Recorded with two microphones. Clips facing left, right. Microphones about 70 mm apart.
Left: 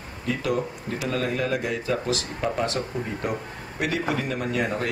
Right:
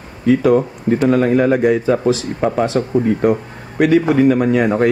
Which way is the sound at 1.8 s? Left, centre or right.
Right.